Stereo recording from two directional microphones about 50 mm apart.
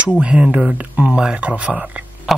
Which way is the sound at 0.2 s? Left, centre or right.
Right.